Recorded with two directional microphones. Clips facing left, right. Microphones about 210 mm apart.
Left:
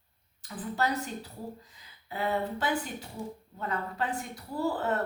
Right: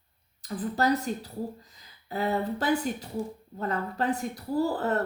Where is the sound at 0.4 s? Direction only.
40° right (ahead or behind).